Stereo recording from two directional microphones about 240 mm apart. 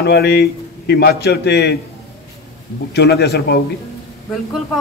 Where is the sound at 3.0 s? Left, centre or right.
Left.